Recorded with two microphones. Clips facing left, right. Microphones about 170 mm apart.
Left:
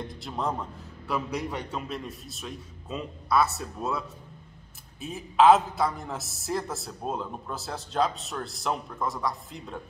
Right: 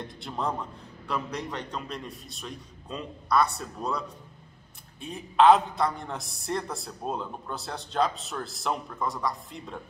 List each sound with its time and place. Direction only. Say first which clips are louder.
0.0 s a man's voice: left 1 dB; centre (ahead or behind)
5.0 s a man's voice: even; centre (ahead or behind)